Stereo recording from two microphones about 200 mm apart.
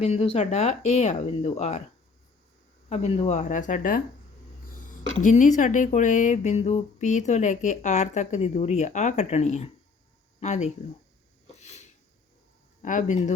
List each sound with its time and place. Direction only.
0.0 s speech: 35° left (ahead or behind)
2.9 s speech: 35° left (ahead or behind)
5.2 s speech: 40° left (ahead or behind)
11.6 s a sound: 35° left (ahead or behind)
12.8 s speech: 40° left (ahead or behind)